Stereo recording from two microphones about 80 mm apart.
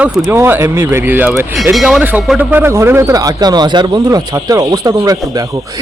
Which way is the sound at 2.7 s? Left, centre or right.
Right.